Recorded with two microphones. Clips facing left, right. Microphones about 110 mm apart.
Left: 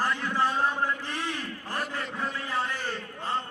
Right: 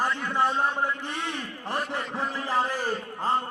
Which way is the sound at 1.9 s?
30° right (ahead or behind).